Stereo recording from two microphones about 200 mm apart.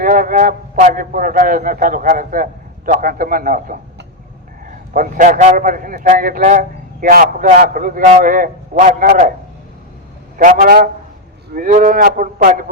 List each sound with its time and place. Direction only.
0.0 s a man's voice: 40° right (ahead or behind)
4.9 s a man's voice: 40° right (ahead or behind)
10.3 s a man's voice: 45° right (ahead or behind)